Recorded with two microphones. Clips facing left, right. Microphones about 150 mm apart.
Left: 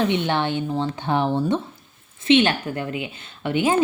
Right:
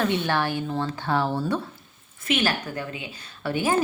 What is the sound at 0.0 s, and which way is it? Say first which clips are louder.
A woman's voice: left 3 dB; 20° left (ahead or behind).